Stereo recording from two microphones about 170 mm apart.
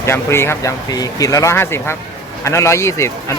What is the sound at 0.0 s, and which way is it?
Speech, 15° left (ahead or behind).